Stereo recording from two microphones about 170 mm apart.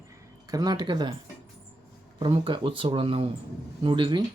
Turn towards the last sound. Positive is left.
turn(degrees=-30)  # may be behind; listen again after turning